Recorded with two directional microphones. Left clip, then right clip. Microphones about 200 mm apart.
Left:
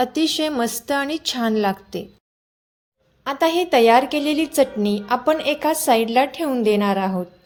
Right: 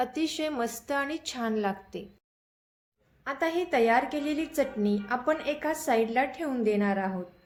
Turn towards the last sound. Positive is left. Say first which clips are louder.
# left 9 dB
turn(degrees=40)  # may be behind; listen again after turning